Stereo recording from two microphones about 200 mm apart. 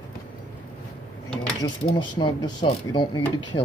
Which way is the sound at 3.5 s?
50° left (ahead or behind).